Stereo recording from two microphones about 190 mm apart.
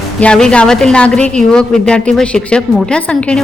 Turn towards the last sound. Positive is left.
turn(degrees=5)  # may be behind; listen again after turning